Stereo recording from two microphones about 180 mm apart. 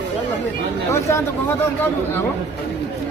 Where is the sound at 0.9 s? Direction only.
15° left (ahead or behind).